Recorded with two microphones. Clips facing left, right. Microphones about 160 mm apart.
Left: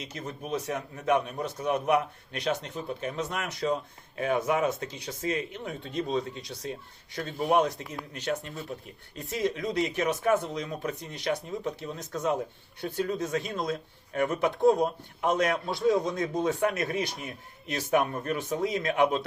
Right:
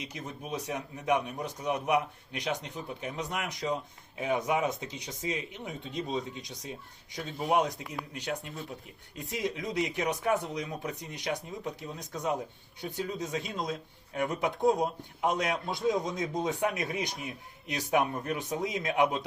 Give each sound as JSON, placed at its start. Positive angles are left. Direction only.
{"t": 0.0, "sound": "speech", "side_deg": -15}
{"t": 18.3, "sound": "speech", "side_deg": -15}